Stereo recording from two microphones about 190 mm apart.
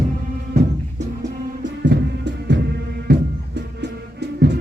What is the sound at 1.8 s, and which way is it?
Music, 65° right (ahead or behind).